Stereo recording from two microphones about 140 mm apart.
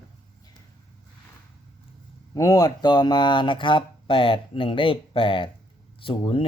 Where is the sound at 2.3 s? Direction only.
25° left (ahead or behind).